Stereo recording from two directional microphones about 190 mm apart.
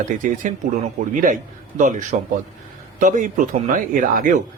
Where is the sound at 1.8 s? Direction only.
40° right (ahead or behind).